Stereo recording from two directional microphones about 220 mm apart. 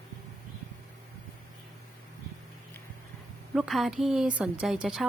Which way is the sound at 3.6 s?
Centre (ahead or behind).